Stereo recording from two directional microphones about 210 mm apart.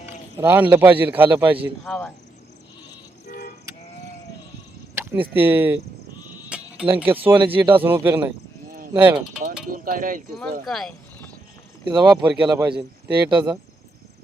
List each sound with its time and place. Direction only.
0.3 s a man's voice: 10° right (ahead or behind)
1.8 s speech: 5° left (ahead or behind)
3.2 s toot: 45° left (ahead or behind)
4.9 s speech: 10° right (ahead or behind)
6.5 s cricket: 5° right (ahead or behind)
6.9 s a man's voice: 10° right (ahead or behind)
9.6 s speech: 40° right (ahead or behind)
10.7 s vehicle: centre (ahead or behind)
11.9 s a man's voice: 5° right (ahead or behind)